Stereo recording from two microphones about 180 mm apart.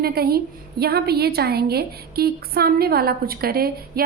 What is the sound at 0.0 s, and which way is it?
A woman's voice, 60° right (ahead or behind).